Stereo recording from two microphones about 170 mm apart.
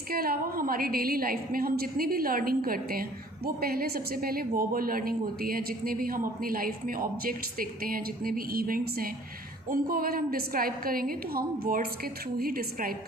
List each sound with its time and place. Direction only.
0.1 s a woman's voice: 60° right (ahead or behind)